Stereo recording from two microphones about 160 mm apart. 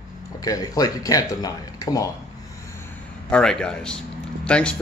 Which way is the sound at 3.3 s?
5° left (ahead or behind).